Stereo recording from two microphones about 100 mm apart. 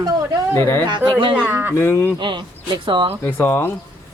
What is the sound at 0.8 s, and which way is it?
Speech, 50° right (ahead or behind).